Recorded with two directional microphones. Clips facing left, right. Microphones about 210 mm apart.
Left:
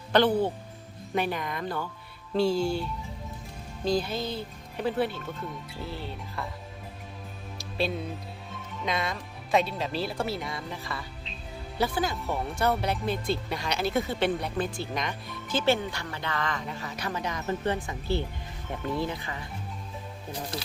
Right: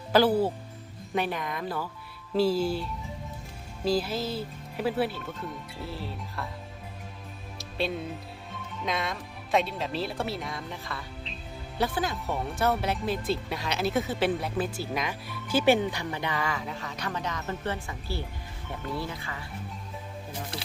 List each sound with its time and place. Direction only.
0.1 s speech: 5° right (ahead or behind)
7.6 s music: centre (ahead or behind)
8.8 s speech: centre (ahead or behind)
18.9 s speech: 20° left (ahead or behind)